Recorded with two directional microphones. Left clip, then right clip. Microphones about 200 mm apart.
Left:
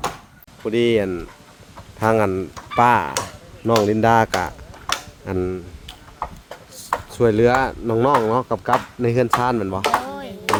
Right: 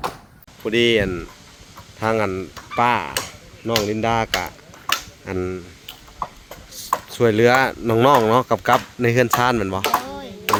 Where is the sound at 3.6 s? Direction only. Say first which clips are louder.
Left 4 dB; 25° left (ahead or behind).